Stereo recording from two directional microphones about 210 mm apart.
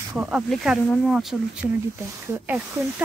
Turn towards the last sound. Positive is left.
turn(degrees=-10)  # may be behind; listen again after turning